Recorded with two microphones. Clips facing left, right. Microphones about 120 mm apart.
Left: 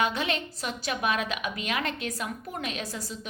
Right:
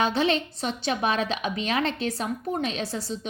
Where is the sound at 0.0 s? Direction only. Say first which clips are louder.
Right 5 dB; 30° right (ahead or behind).